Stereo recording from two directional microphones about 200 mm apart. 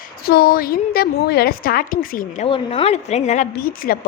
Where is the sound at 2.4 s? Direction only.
25° left (ahead or behind); by 4.0 s 45° left (ahead or behind).